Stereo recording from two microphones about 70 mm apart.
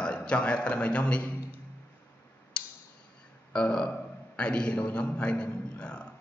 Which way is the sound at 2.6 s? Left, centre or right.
Centre.